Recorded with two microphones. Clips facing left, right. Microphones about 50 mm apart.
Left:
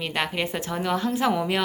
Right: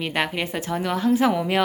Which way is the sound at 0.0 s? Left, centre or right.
Centre.